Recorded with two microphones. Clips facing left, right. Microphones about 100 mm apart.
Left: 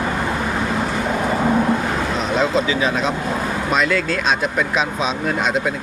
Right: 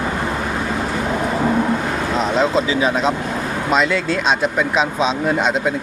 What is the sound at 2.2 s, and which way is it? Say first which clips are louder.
Speech: right 2 dB; 30° right (ahead or behind).